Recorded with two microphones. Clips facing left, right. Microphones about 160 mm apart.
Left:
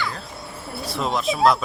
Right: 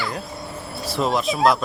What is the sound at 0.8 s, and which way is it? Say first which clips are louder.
Speech: right 2 dB; centre (ahead or behind).